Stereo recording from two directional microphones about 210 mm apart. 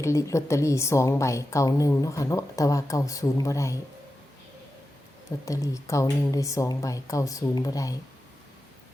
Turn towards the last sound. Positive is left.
turn(degrees=15)  # may be behind; listen again after turning